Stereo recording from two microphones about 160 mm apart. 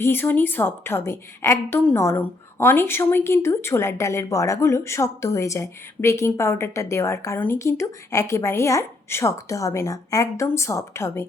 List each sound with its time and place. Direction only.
0.0 s a woman's voice: 15° left (ahead or behind)